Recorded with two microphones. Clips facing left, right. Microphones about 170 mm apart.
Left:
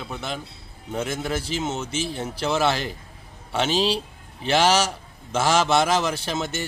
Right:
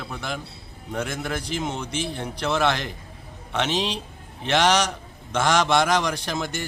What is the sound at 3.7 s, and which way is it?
Speech, 30° left (ahead or behind).